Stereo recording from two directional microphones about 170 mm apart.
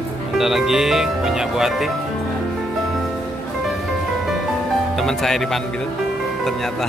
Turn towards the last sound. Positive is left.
turn(degrees=0)  # may be behind; listen again after turning